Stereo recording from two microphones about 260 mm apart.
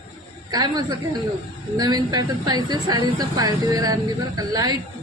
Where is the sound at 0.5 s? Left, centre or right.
Centre.